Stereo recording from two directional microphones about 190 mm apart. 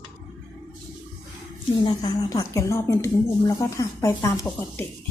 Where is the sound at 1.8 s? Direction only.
20° left (ahead or behind).